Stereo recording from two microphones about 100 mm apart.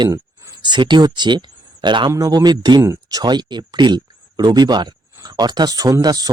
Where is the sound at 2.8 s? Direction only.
35° right (ahead or behind).